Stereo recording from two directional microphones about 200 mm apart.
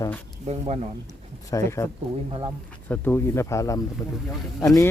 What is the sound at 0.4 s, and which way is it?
Speech, 35° right (ahead or behind).